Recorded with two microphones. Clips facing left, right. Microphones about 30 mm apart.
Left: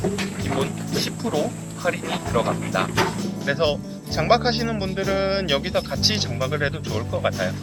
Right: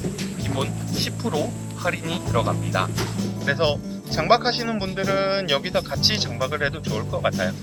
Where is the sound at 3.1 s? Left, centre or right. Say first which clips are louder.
Even; centre.